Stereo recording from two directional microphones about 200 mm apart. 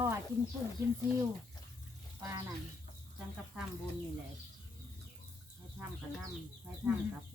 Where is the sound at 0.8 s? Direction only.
15° right (ahead or behind).